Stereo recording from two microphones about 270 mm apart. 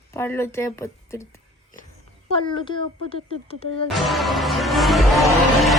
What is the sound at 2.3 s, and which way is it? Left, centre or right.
Speech, centre.